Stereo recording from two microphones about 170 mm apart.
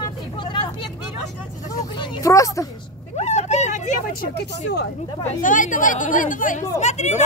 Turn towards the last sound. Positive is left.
turn(degrees=40)  # may be behind; listen again after turning